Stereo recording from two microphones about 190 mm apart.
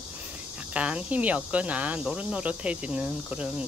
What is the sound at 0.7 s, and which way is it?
Speech, 5° right (ahead or behind).